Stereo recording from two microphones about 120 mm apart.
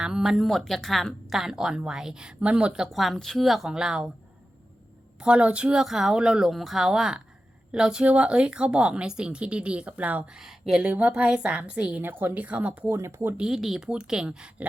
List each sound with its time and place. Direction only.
0.0 s speech: 5° right (ahead or behind)
5.2 s speech: 10° right (ahead or behind)
12.9 s speech: 20° right (ahead or behind)
13.4 s speech: centre (ahead or behind)